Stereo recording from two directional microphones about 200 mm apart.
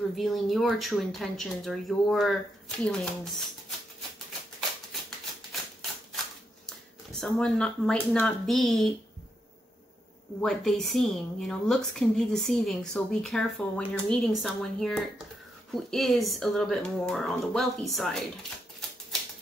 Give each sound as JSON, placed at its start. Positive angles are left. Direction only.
{"t": 0.1, "sound": "a woman's voice", "side_deg": 0}
{"t": 7.1, "sound": "a woman's voice", "side_deg": 5}
{"t": 10.4, "sound": "a woman's voice", "side_deg": 0}